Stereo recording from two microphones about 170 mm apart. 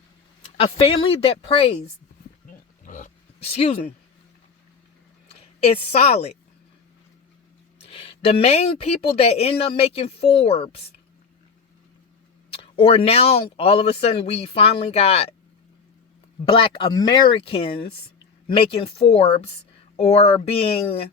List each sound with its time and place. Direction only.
0.5 s speech: 35° left (ahead or behind)
2.8 s pig: 50° left (ahead or behind)
3.4 s speech: 35° left (ahead or behind)
5.6 s speech: 40° left (ahead or behind)
7.8 s speech: 35° left (ahead or behind)
12.5 s speech: 35° left (ahead or behind)
16.5 s speech: 30° left (ahead or behind)